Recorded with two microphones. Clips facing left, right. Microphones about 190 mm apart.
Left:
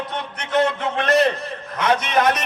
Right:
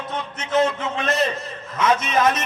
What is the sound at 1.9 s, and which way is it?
Speech, 60° left (ahead or behind).